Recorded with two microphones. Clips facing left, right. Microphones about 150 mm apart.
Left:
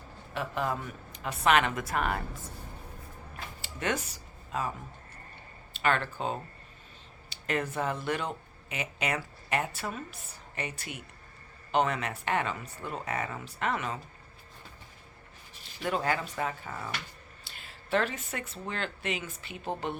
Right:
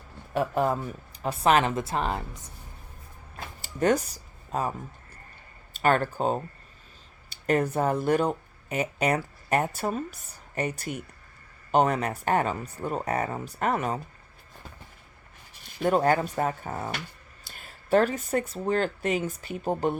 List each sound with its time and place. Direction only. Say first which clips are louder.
0.3 s a woman's voice: right 7 dB; 40° right (ahead or behind); by 2.5 s 20° right (ahead or behind)
3.6 s a sound: right 9 dB; 40° right (ahead or behind)
5.7 s speech: right 5 dB; 45° right (ahead or behind)
7.4 s speech: right 7 dB; 40° right (ahead or behind)
15.8 s speech: right 8 dB; 45° right (ahead or behind)